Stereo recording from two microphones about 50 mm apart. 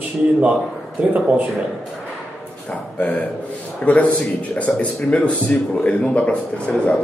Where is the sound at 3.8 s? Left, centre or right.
Left.